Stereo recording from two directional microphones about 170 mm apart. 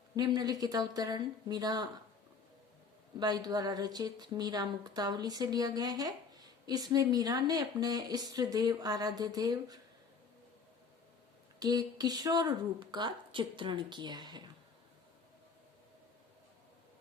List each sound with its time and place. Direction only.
0.2 s speech: 20° right (ahead or behind)
3.2 s speech: 25° right (ahead or behind)
11.6 s speech: 25° right (ahead or behind)